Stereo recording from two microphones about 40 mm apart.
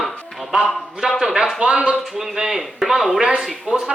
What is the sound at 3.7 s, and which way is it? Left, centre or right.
Speech, right.